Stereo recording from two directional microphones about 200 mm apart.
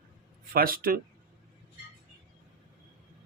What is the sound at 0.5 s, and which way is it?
Speech, 45° right (ahead or behind).